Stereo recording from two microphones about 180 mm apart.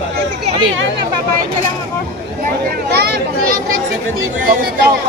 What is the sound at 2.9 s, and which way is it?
Speech, 65° right (ahead or behind).